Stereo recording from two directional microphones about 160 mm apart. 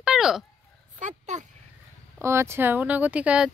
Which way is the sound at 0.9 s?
50° right (ahead or behind).